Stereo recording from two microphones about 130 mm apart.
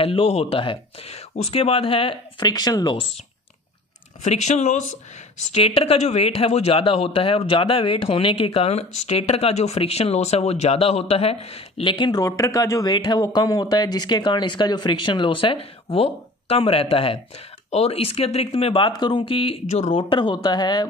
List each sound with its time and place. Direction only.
0.0 s speech: 45° left (ahead or behind)
2.4 s speech: 30° left (ahead or behind)
4.2 s speech: 60° left (ahead or behind)
5.5 s speech: 50° left (ahead or behind); by 20.8 s 35° left (ahead or behind)